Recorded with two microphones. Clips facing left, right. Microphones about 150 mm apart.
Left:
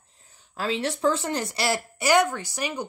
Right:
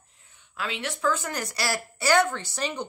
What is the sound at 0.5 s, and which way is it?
Speech, 35° left (ahead or behind).